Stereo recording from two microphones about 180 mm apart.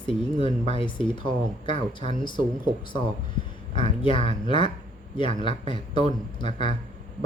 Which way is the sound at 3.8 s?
30° left (ahead or behind).